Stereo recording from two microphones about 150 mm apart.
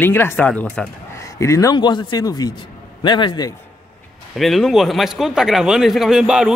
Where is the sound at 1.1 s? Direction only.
20° left (ahead or behind).